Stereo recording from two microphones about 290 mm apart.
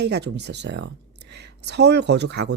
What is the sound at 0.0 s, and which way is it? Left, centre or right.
Speech, right.